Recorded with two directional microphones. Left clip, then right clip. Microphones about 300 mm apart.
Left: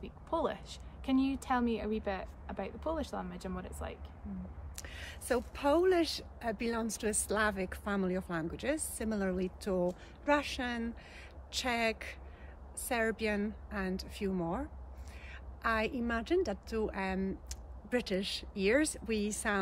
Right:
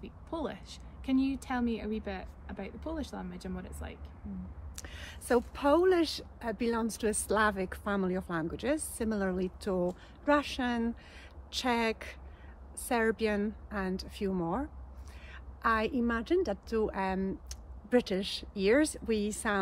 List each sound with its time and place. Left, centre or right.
0.0 s a woman's voice: centre
4.7 s a woman's voice: centre